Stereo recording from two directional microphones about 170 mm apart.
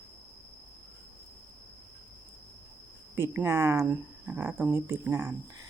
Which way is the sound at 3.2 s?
15° right (ahead or behind).